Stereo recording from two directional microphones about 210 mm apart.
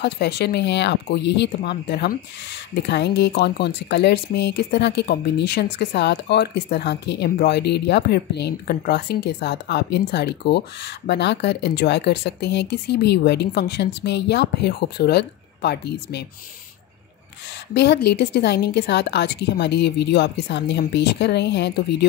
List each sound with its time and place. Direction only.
0.0 s speech: 50° left (ahead or behind)
17.7 s speech: 50° left (ahead or behind)